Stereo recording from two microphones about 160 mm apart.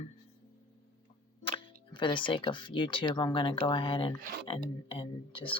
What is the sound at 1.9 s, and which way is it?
Speech, 30° left (ahead or behind).